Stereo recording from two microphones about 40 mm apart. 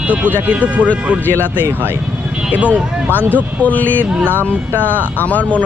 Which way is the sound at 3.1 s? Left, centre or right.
Left.